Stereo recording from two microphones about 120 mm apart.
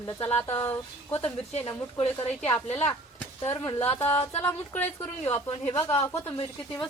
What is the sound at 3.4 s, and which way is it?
Speech, 20° left (ahead or behind).